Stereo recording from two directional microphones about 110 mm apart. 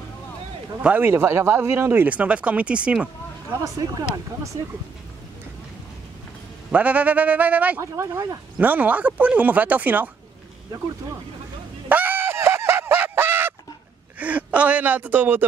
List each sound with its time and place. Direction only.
0.7 s speech: 15° right (ahead or behind)
3.6 s speech: 30° right (ahead or behind)
4.6 s speech: 60° right (ahead or behind)
6.7 s speech: 10° right (ahead or behind)
7.8 s speech: 25° right (ahead or behind)
8.5 s speech: 15° right (ahead or behind)
11.9 s fowl: 15° right (ahead or behind)
14.1 s a man's voice: 15° right (ahead or behind)